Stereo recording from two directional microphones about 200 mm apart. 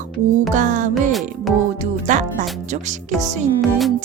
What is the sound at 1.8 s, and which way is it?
Music, 35° right (ahead or behind).